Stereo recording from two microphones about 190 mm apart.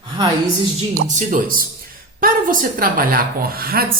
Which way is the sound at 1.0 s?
45° right (ahead or behind).